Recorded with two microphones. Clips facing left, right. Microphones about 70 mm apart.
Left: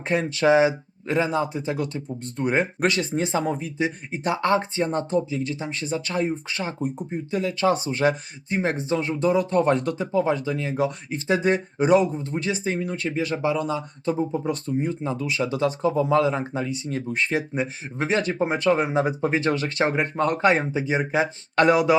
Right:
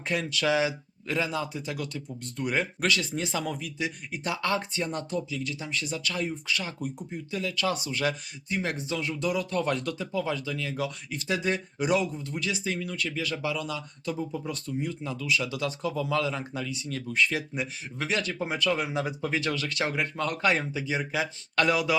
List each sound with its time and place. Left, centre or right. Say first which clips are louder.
0.1 s speech: left 8 dB; left